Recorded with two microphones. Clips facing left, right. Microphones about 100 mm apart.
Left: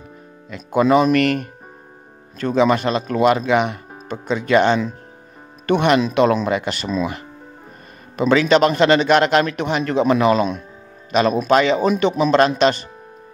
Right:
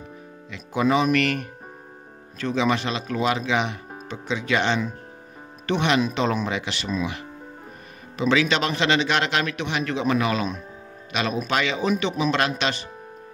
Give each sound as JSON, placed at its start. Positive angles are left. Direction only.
{"t": 0.5, "sound": "a man's voice", "side_deg": 55}
{"t": 2.3, "sound": "a man's voice", "side_deg": 45}
{"t": 8.2, "sound": "a man's voice", "side_deg": 45}